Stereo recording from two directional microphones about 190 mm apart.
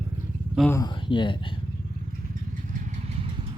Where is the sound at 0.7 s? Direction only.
20° left (ahead or behind).